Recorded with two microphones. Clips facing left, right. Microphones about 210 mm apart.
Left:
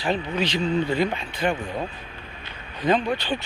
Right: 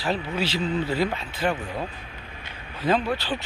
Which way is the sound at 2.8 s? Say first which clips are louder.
Left 1 dB; 5° right (ahead or behind).